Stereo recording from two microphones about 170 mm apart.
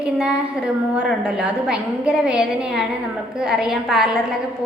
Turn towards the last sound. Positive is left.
turn(degrees=0)  # may be behind; listen again after turning